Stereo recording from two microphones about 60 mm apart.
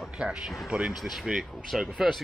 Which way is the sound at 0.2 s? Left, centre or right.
Centre.